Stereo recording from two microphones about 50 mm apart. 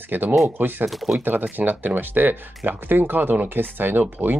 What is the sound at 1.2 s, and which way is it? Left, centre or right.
Speech, right.